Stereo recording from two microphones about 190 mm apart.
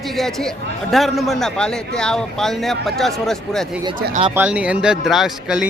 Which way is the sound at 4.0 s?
45° right (ahead or behind).